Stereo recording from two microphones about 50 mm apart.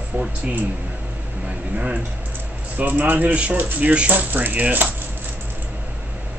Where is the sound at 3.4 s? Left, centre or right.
Right.